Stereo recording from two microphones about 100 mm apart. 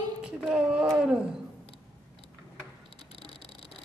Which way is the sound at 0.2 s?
5° right (ahead or behind).